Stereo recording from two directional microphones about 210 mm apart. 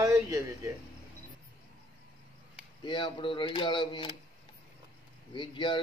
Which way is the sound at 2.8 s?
20° left (ahead or behind).